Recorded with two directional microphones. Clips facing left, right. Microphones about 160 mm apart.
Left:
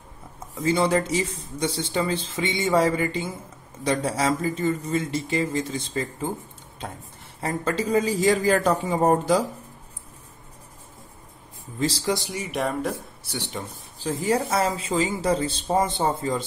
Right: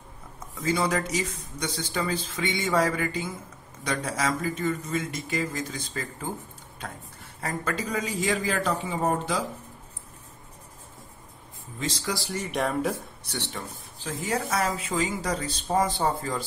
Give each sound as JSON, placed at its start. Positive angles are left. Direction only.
{"t": 0.6, "sound": "speech", "side_deg": 25}
{"t": 7.3, "sound": "a man's voice", "side_deg": 25}
{"t": 12.0, "sound": "speech", "side_deg": 20}
{"t": 12.5, "sound": "speech", "side_deg": 0}
{"t": 13.3, "sound": "speech", "side_deg": 15}
{"t": 13.9, "sound": "speech", "side_deg": 35}